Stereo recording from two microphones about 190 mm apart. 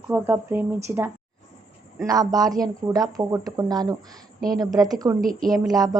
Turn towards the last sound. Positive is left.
turn(degrees=-20)  # may be behind; listen again after turning